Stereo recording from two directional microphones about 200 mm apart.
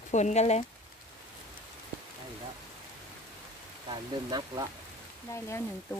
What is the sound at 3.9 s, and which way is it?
Speech, 20° right (ahead or behind).